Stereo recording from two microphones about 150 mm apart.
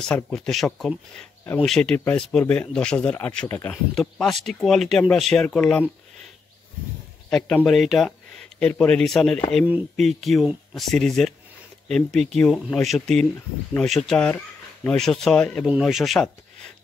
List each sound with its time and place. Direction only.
0.0 s speech: 5° left (ahead or behind)
3.9 s speech: centre (ahead or behind)
7.2 s speech: 5° left (ahead or behind)
14.3 s a sound: 15° left (ahead or behind)
15.0 s speech: 5° left (ahead or behind)